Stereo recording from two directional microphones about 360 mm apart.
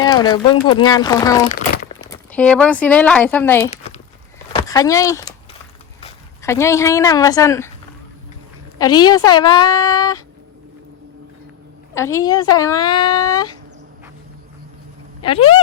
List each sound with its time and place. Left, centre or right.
0.0 s speech: centre
3.7 s a sound: centre
4.5 s speech: centre
8.8 s speech: centre
11.9 s speech: centre
15.2 s speech: centre